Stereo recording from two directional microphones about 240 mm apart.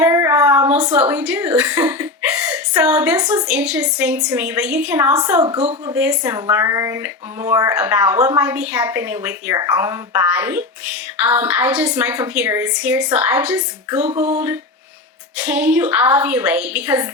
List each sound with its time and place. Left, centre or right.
0.0 s a woman's voice: centre
5.5 s speech: right
5.9 s speech: centre
14.1 s speech: right
14.3 s a sound: centre
15.4 s speech: centre